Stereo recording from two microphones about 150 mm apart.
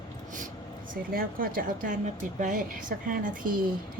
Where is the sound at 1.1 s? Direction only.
70° right (ahead or behind).